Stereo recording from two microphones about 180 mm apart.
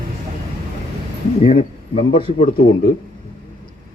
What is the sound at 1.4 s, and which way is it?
A man's voice, 30° left (ahead or behind).